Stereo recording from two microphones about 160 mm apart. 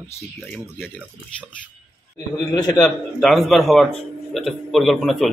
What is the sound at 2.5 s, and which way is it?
Speech, 25° left (ahead or behind).